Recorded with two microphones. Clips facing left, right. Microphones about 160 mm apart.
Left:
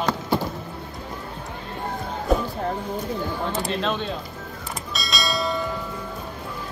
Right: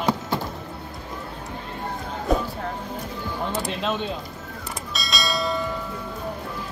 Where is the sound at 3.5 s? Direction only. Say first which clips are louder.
Even; 5° right (ahead or behind).